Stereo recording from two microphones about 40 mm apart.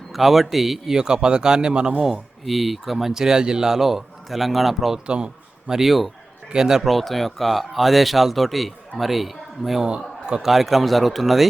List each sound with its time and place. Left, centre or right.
0.1 s a man's voice: centre
0.9 s speech: centre
2.4 s a man's voice: centre
5.0 s a sound: right
5.7 s a man's voice: centre
6.8 s a man's voice: centre